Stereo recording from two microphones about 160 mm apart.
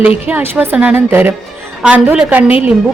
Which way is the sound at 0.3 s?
10° right (ahead or behind).